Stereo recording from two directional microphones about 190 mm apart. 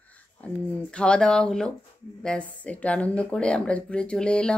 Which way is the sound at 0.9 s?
5° left (ahead or behind).